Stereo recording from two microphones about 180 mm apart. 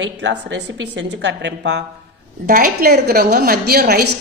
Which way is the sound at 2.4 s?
55° right (ahead or behind).